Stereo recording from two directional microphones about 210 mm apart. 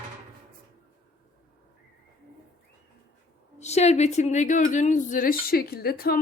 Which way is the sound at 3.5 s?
30° left (ahead or behind).